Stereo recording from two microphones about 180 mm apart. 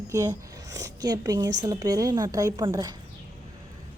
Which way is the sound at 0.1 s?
20° right (ahead or behind).